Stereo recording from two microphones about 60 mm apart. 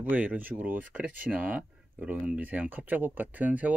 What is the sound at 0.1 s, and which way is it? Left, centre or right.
Speech, right.